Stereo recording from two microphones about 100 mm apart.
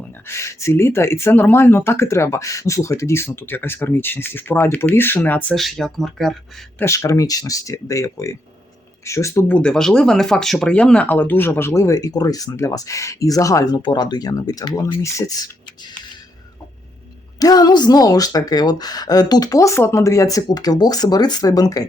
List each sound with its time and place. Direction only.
0.3 s speech: 30° left (ahead or behind)
5.5 s speech: 5° left (ahead or behind)
6.8 s speech: 30° left (ahead or behind)
9.5 s speech: 10° left (ahead or behind); by 16.0 s 45° left (ahead or behind)
17.4 s speech: 40° left (ahead or behind)